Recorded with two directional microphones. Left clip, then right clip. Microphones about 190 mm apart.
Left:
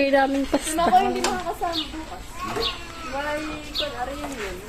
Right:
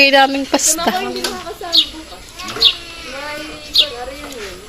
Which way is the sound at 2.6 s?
50° left (ahead or behind).